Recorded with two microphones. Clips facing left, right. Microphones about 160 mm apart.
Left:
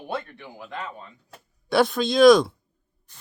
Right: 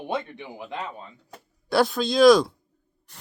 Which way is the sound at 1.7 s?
Centre (ahead or behind).